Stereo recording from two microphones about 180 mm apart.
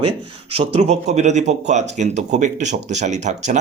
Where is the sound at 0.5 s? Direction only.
35° right (ahead or behind).